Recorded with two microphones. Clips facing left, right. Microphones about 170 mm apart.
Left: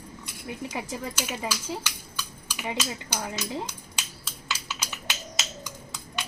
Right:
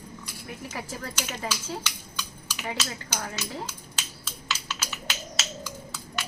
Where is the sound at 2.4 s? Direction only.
10° left (ahead or behind).